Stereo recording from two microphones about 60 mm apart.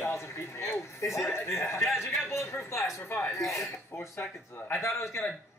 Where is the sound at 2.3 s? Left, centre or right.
Left.